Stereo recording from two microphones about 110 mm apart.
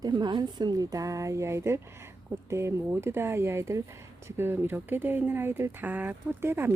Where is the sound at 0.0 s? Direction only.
40° right (ahead or behind).